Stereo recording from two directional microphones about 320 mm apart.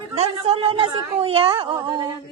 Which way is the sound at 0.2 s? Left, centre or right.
Centre.